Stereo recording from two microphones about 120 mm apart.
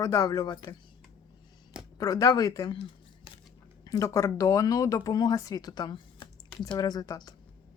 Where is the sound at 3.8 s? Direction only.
30° left (ahead or behind).